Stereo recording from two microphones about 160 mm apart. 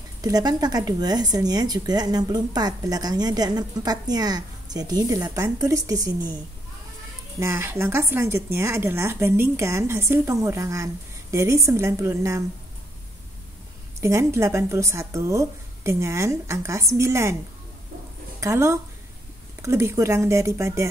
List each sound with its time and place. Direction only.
0.2 s speech: 25° right (ahead or behind)
7.3 s speech: 15° right (ahead or behind)
14.0 s speech: 20° right (ahead or behind)
18.4 s speech: 20° right (ahead or behind)